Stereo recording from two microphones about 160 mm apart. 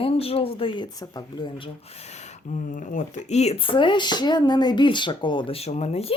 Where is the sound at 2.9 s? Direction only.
45° left (ahead or behind); by 5.6 s 30° left (ahead or behind).